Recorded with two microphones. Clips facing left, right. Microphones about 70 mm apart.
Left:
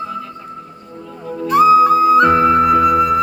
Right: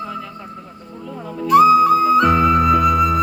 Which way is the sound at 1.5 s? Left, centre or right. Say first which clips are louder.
Left 1 dB; left.